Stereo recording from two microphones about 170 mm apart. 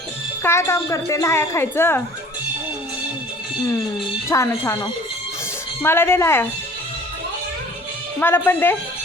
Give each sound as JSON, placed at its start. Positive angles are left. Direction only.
{"t": 0.4, "sound": "speech", "side_deg": 15}
{"t": 4.3, "sound": "speech", "side_deg": 15}
{"t": 8.2, "sound": "speech", "side_deg": 10}